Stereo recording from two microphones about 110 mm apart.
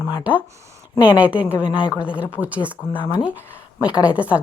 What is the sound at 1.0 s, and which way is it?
Speech, 15° right (ahead or behind).